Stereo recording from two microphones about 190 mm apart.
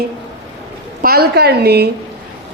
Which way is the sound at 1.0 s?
55° right (ahead or behind).